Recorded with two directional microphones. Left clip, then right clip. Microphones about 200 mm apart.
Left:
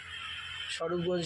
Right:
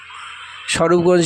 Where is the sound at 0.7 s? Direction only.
55° right (ahead or behind).